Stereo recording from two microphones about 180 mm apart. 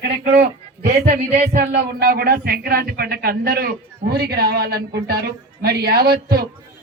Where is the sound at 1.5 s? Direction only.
60° right (ahead or behind).